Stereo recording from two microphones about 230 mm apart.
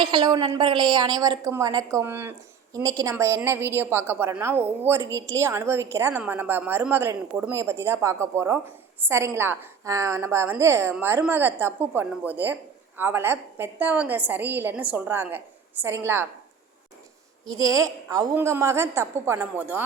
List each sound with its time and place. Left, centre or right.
0.0 s a woman's voice: centre
17.4 s a woman's voice: centre